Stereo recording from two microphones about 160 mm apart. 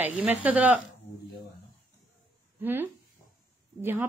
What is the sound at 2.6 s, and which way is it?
A woman's voice, 10° right (ahead or behind).